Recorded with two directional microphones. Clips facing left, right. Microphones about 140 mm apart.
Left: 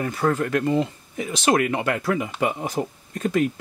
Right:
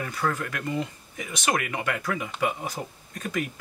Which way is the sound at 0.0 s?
30° left (ahead or behind).